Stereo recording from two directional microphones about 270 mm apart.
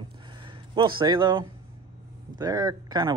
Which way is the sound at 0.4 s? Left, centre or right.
Centre.